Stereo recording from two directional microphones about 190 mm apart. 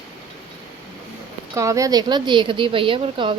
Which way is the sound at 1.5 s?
15° right (ahead or behind).